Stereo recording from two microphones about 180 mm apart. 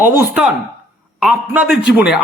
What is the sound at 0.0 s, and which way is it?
Speech, 10° right (ahead or behind).